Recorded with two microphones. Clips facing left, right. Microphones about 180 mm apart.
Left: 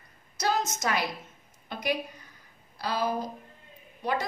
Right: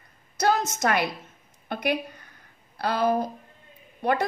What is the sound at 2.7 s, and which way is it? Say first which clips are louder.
A woman's voice: right 6 dB; 60° right (ahead or behind).